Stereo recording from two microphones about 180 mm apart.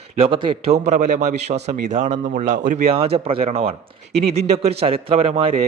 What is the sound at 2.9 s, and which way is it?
A man's voice, 30° right (ahead or behind).